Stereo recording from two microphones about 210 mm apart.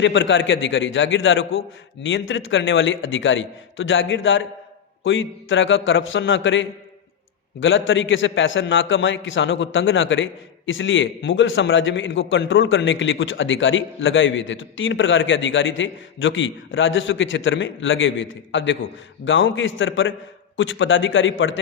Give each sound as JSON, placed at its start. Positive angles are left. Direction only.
{"t": 0.0, "sound": "a man's voice", "side_deg": 60}